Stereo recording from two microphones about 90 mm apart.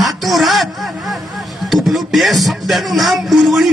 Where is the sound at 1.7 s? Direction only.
Centre (ahead or behind).